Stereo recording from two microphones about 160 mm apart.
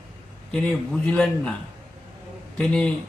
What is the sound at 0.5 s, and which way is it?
A man's voice, centre (ahead or behind).